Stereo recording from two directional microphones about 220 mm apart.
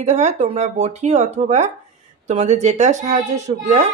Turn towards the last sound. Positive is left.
turn(degrees=-30)  # may be behind; listen again after turning